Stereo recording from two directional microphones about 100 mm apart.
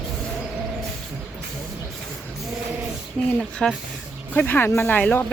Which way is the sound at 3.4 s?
5° left (ahead or behind).